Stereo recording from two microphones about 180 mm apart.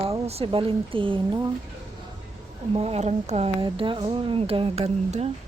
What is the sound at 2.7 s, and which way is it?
Speech, 35° right (ahead or behind).